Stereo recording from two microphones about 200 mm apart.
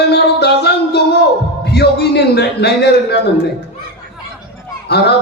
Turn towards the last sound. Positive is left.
turn(degrees=55)  # may be behind; listen again after turning